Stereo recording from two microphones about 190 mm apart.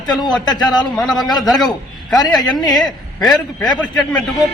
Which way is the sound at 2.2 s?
20° left (ahead or behind).